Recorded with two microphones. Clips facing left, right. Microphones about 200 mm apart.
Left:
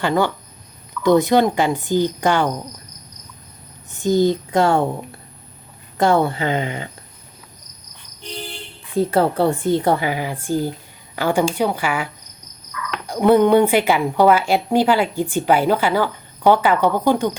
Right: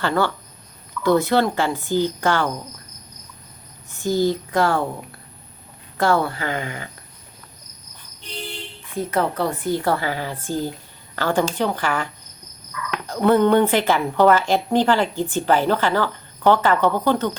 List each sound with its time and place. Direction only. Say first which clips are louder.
0.0 s a woman's voice: left 2 dB; 15° left (ahead or behind)
4.0 s speech: left 4 dB; 20° left (ahead or behind)
9.0 s a woman's voice: left 5 dB; 30° left (ahead or behind); by 12.0 s 10° left (ahead or behind)
13.1 s a woman's voice: left 3 dB; 15° left (ahead or behind)